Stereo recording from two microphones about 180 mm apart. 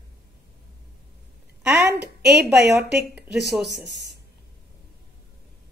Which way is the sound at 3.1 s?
Centre (ahead or behind).